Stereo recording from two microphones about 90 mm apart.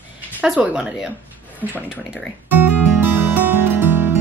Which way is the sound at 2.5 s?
20° right (ahead or behind).